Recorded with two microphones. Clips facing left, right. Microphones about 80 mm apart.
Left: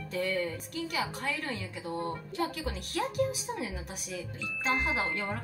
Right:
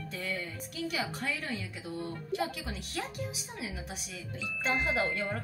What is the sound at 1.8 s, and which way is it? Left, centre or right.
Speech, left.